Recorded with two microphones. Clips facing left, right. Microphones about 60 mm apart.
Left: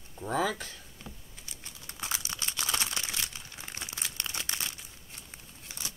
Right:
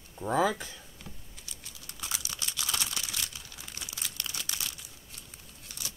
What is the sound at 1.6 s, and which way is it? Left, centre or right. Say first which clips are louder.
Crumpling: left 3 dB; left.